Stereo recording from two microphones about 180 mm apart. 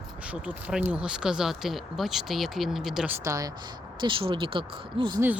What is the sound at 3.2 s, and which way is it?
Speech, 20° right (ahead or behind).